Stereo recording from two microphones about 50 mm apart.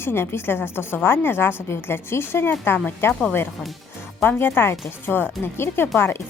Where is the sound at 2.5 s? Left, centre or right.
Left.